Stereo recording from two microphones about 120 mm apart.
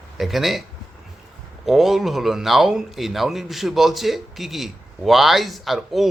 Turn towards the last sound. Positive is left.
turn(degrees=0)  # may be behind; listen again after turning